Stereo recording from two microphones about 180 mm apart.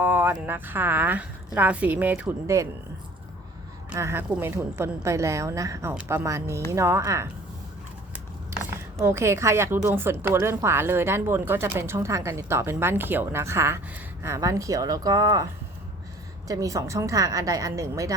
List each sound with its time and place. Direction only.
0.0 s a woman's voice: 10° right (ahead or behind)
3.8 s a woman's voice: 15° right (ahead or behind)
9.0 s a woman's voice: 15° right (ahead or behind)
16.5 s a woman's voice: 20° right (ahead or behind)